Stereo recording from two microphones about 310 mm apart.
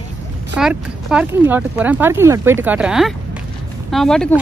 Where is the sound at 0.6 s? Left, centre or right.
Centre.